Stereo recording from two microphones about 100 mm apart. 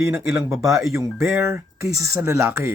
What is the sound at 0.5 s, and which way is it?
Speech, 30° right (ahead or behind).